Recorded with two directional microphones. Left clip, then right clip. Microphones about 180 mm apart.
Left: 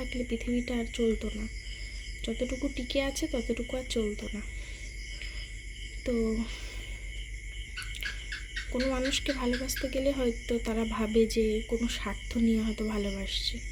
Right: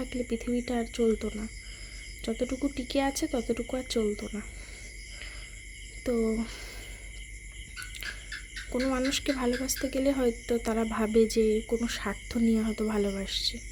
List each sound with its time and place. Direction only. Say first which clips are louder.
0.0 s speech: right 1 dB; 20° right (ahead or behind)
6.1 s speech: right 2 dB; 20° right (ahead or behind)
8.7 s speech: right 1 dB; 15° right (ahead or behind)